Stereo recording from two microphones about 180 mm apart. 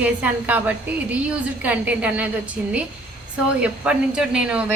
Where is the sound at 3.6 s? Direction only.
5° right (ahead or behind).